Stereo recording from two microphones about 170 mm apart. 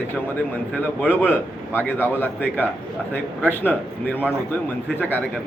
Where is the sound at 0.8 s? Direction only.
10° left (ahead or behind).